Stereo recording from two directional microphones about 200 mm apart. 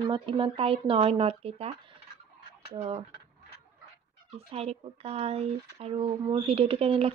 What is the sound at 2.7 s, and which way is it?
Speech, 25° right (ahead or behind).